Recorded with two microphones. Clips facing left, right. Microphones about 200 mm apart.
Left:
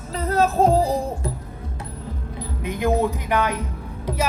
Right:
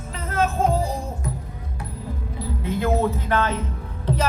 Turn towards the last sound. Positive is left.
turn(degrees=10)  # may be behind; listen again after turning